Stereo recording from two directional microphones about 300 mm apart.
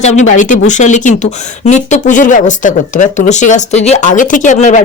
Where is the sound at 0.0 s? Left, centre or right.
Left.